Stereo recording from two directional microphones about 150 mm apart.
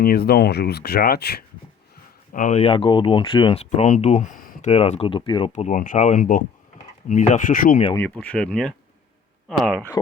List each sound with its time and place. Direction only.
0.0 s speech: 90° left
2.3 s speech: 60° left (ahead or behind)
2.6 s speech: 35° left (ahead or behind); by 4.7 s 60° left (ahead or behind)
4.7 s speech: 45° left (ahead or behind)
5.5 s speech: 50° left (ahead or behind)
7.9 s speech: 10° left (ahead or behind)